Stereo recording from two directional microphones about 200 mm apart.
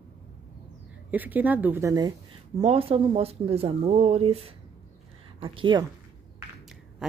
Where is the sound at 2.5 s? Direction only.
30° right (ahead or behind).